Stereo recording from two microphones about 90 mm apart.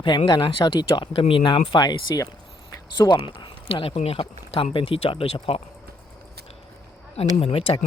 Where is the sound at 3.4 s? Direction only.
75° left (ahead or behind).